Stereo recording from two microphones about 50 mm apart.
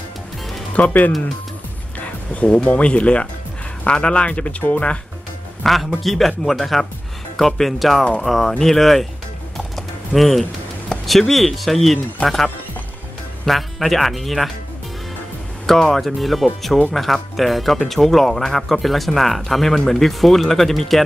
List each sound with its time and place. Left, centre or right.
0.7 s speech: left
2.0 s music: left
2.8 s speech: left
5.6 s a man's voice: centre
9.8 s typing: centre
11.1 s speech: centre
13.5 s speech: centre
15.6 s speech: centre